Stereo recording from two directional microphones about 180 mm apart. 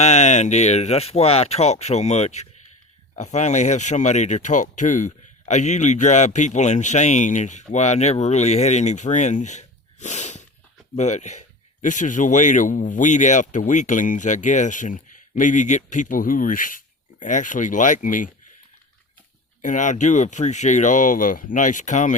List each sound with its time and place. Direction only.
0.0 s speech: 40° left (ahead or behind)
19.6 s speech: 45° left (ahead or behind)